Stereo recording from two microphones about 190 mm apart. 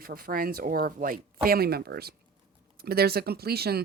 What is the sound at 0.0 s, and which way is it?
Speech, 50° right (ahead or behind).